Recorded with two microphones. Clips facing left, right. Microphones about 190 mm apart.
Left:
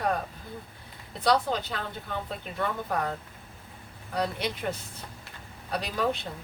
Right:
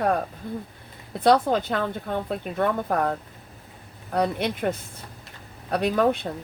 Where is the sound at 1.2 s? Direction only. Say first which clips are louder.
Right 6 dB; 55° right (ahead or behind).